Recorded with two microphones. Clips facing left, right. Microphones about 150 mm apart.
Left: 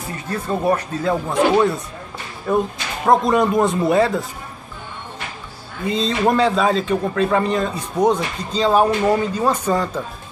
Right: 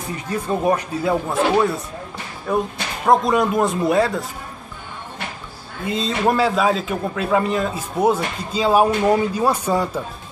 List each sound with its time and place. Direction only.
0.3 s speech: 15° right (ahead or behind)
2.5 s a man's voice: centre (ahead or behind)
5.9 s a man's voice: 5° right (ahead or behind)